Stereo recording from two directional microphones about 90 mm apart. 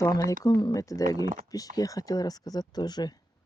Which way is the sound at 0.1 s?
45° left (ahead or behind).